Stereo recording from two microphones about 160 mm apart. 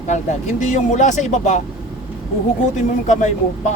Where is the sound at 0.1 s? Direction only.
50° left (ahead or behind).